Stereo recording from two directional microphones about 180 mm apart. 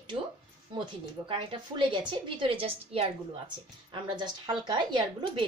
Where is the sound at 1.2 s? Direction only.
25° right (ahead or behind).